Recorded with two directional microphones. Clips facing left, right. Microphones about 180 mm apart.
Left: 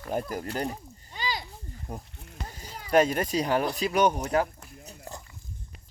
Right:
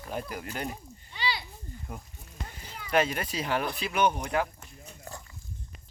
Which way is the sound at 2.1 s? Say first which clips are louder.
Left 3 dB; 65° left (ahead or behind).